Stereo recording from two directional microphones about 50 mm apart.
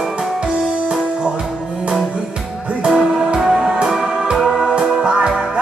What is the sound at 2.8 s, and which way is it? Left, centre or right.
Music, centre.